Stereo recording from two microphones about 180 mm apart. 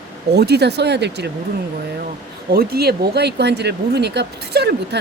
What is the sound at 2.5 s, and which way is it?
Speech, 60° right (ahead or behind).